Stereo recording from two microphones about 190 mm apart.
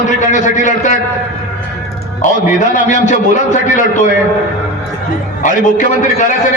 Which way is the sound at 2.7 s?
40° left (ahead or behind).